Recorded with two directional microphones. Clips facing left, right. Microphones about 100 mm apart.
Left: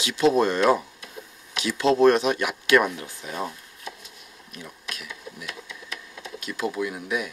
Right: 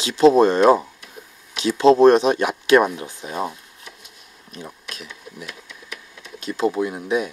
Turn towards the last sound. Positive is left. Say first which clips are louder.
# right 6 dB
turn(degrees=-30)  # may be behind; listen again after turning